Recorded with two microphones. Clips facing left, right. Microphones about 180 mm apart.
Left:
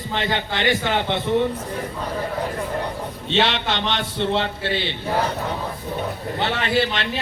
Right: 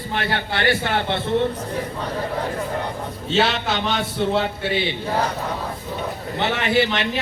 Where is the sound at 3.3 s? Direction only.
5° right (ahead or behind).